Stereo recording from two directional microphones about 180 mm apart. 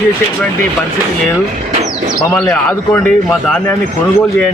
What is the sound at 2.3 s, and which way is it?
A man's voice, 5° left (ahead or behind).